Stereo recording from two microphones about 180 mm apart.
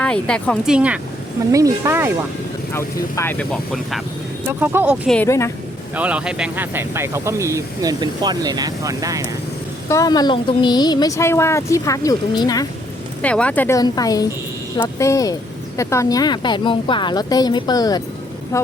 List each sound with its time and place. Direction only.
0.0 s speech: 5° left (ahead or behind)
1.5 s speech: 15° right (ahead or behind)
2.7 s speech: 10° left (ahead or behind)
4.4 s speech: 10° right (ahead or behind)
5.0 s speech: 10° left (ahead or behind)
6.0 s speech: 5° right (ahead or behind)
9.9 s a woman's voice: 20° left (ahead or behind)
13.2 s a woman's voice: 5° left (ahead or behind)